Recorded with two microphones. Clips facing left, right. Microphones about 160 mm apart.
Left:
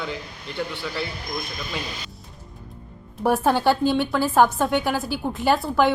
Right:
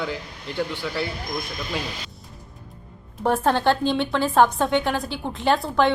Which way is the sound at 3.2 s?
5° left (ahead or behind).